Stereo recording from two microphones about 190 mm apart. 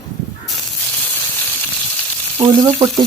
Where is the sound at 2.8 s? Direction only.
15° right (ahead or behind).